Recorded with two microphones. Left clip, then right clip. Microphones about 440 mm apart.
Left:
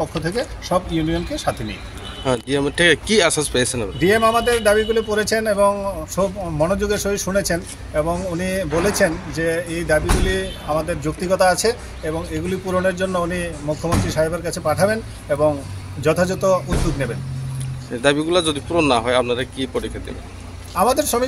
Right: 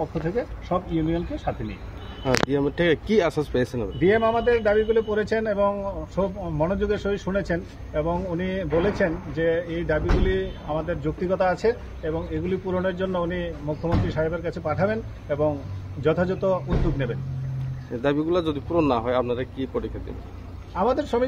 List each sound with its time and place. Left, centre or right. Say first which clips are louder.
0.1 s speech: left 4 dB; right